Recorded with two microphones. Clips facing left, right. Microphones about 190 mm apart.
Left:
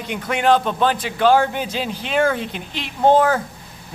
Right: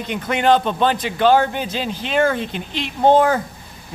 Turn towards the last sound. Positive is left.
turn(degrees=5)  # may be behind; listen again after turning